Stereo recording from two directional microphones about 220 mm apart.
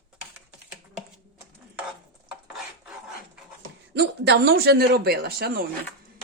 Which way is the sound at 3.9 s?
50° right (ahead or behind).